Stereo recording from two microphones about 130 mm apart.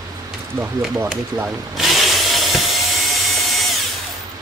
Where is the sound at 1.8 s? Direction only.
Centre (ahead or behind).